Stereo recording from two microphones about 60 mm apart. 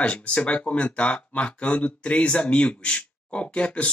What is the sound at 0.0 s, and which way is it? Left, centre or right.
Speech, centre.